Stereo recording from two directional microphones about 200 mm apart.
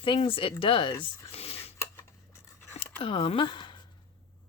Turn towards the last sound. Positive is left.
turn(degrees=25)  # may be behind; listen again after turning